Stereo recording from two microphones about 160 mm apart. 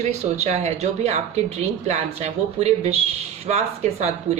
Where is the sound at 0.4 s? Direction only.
45° right (ahead or behind).